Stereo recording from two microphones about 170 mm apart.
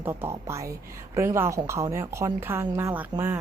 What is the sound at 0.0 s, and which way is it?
Speech, 10° right (ahead or behind).